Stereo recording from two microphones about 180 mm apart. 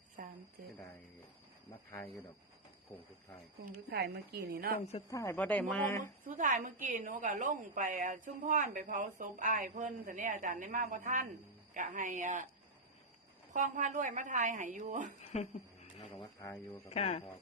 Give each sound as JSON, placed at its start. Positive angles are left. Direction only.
{"t": 0.2, "sound": "a sound", "side_deg": -45}
{"t": 3.9, "sound": "a woman's voice", "side_deg": -65}
{"t": 5.0, "sound": "speech", "side_deg": 15}
{"t": 6.0, "sound": "a woman's voice", "side_deg": -45}
{"t": 13.5, "sound": "a woman's voice", "side_deg": -45}
{"t": 15.2, "sound": "speech", "side_deg": 35}
{"t": 16.4, "sound": "speech", "side_deg": 15}
{"t": 16.9, "sound": "speech", "side_deg": 35}